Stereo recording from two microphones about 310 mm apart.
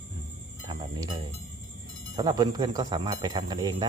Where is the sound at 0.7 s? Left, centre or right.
Centre.